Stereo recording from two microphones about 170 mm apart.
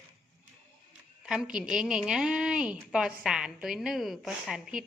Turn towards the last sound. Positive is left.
turn(degrees=-5)  # may be behind; listen again after turning